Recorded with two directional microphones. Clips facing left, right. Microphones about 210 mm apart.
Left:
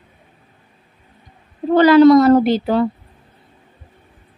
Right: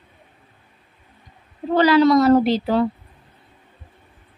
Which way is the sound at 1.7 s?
55° left (ahead or behind).